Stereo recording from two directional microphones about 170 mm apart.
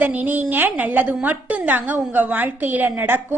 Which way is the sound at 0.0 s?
10° right (ahead or behind).